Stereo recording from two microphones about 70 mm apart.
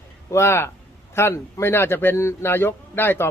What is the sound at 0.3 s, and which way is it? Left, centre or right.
Speech, left.